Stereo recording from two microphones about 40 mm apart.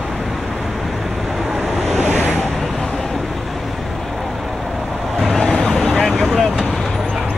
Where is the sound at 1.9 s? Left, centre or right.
Right.